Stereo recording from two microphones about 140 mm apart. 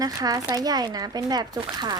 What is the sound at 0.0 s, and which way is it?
Speech, 25° right (ahead or behind).